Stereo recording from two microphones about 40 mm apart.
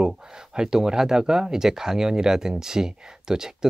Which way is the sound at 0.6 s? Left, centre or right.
Centre.